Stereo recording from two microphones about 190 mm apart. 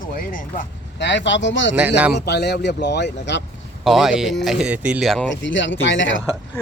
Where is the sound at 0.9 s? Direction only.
70° left (ahead or behind).